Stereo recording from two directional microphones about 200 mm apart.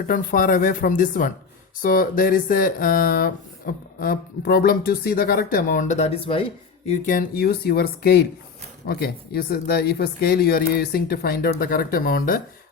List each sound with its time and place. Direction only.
0.1 s speech: 45° left (ahead or behind)
6.8 s speech: 40° left (ahead or behind)